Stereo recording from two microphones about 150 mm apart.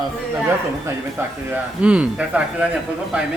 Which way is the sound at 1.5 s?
10° right (ahead or behind).